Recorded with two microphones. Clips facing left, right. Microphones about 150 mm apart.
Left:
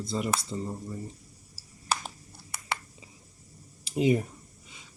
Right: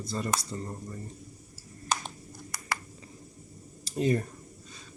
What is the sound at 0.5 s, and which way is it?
Speech, 10° left (ahead or behind).